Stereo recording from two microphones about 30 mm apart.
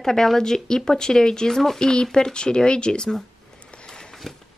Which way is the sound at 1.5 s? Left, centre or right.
Centre.